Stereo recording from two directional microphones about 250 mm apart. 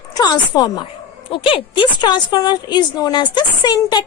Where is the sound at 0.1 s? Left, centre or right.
Centre.